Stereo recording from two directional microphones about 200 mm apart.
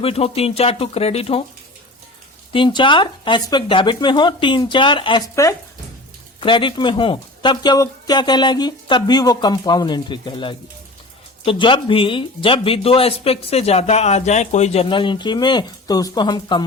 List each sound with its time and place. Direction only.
0.0 s speech: 30° left (ahead or behind)
2.5 s speech: 25° left (ahead or behind)